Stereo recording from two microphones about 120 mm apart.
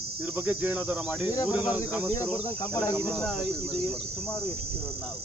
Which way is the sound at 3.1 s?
5° left (ahead or behind).